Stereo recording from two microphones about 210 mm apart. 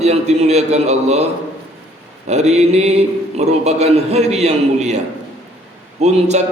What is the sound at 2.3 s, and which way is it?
A man's voice, 30° right (ahead or behind).